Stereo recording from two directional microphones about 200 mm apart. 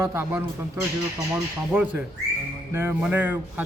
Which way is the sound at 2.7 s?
10° right (ahead or behind).